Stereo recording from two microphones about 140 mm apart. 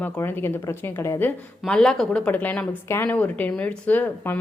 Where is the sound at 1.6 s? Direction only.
5° left (ahead or behind).